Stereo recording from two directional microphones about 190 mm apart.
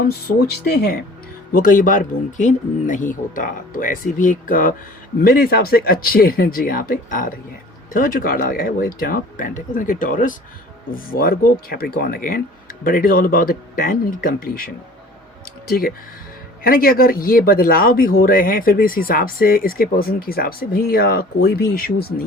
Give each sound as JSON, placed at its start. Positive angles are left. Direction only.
{"t": 0.6, "sound": "speech", "side_deg": 55}
{"t": 1.5, "sound": "speech", "side_deg": 45}
{"t": 16.6, "sound": "speech", "side_deg": 50}